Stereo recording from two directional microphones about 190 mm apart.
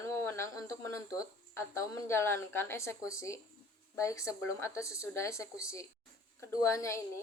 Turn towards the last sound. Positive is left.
turn(degrees=15)  # may be behind; listen again after turning